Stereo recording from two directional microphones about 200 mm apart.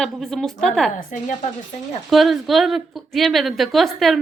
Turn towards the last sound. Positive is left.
turn(degrees=0)  # may be behind; listen again after turning